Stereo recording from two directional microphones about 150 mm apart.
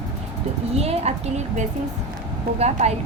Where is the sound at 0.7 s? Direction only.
45° right (ahead or behind).